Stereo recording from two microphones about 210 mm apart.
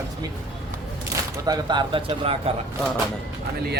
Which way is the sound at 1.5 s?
20° right (ahead or behind).